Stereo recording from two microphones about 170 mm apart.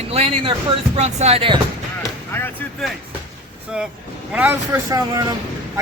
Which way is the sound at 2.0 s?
15° left (ahead or behind).